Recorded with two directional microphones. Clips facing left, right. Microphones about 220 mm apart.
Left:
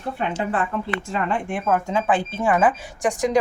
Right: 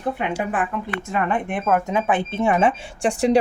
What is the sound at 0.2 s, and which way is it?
A woman's voice, 15° right (ahead or behind).